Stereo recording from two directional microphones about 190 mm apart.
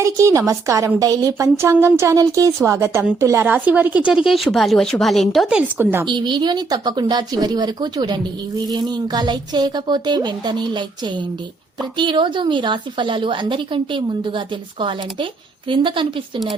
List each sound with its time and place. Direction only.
0.0 s a woman's voice: 15° right (ahead or behind)
6.1 s speech: 25° right (ahead or behind)